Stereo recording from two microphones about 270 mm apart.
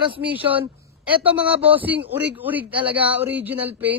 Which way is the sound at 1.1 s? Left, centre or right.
Centre.